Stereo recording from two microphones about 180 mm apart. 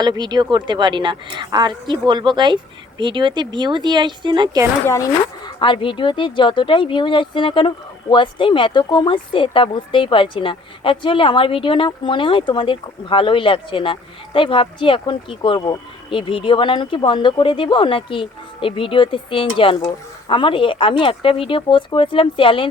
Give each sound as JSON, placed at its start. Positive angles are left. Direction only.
{"t": 0.0, "sound": "a woman's voice", "side_deg": -25}
{"t": 4.9, "sound": "speech", "side_deg": 20}